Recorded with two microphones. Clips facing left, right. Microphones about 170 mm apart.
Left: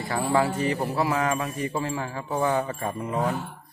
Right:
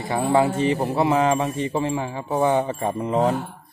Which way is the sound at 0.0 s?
20° right (ahead or behind).